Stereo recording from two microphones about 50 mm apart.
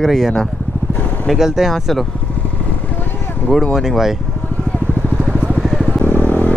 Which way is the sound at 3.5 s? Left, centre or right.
Centre.